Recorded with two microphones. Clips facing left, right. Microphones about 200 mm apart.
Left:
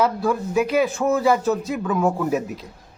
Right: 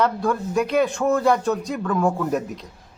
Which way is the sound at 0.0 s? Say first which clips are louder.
Left 1 dB; 5° left (ahead or behind).